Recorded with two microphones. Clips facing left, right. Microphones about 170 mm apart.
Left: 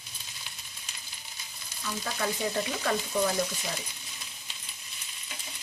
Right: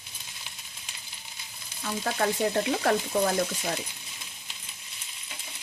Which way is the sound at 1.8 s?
55° right (ahead or behind).